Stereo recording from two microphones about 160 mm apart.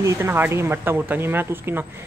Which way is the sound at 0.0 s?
15° right (ahead or behind).